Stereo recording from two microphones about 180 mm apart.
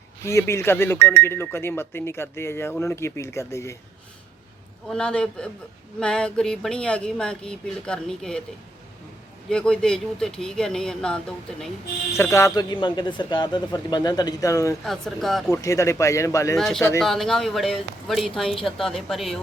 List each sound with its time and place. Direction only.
0.3 s speech: 15° left (ahead or behind)
4.9 s speech: 5° left (ahead or behind)
9.5 s speech: 5° left (ahead or behind)
12.1 s speech: 15° left (ahead or behind)
14.8 s speech: centre (ahead or behind)
15.4 s speech: 15° left (ahead or behind)
16.6 s speech: centre (ahead or behind)